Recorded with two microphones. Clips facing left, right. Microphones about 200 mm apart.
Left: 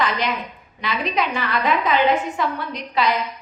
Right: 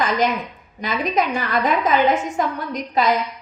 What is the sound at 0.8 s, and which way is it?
A woman's voice, 45° right (ahead or behind).